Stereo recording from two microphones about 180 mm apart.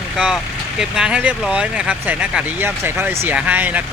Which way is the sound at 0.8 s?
5° right (ahead or behind).